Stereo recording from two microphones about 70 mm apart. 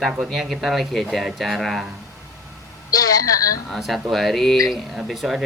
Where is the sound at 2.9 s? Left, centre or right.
Left.